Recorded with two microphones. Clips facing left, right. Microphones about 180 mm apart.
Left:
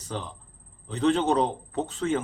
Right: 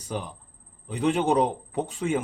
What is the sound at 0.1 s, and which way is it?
Speech, 10° right (ahead or behind).